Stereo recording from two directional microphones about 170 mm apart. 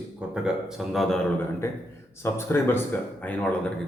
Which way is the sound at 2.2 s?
15° left (ahead or behind).